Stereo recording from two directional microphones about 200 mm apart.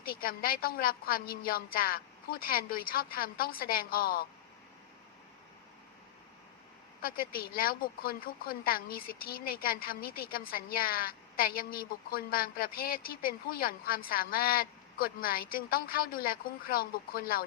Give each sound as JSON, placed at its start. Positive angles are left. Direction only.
{"t": 0.0, "sound": "a woman's voice", "side_deg": 45}
{"t": 7.0, "sound": "a woman's voice", "side_deg": 45}